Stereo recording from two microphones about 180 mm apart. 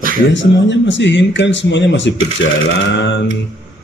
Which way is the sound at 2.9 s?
75° left (ahead or behind).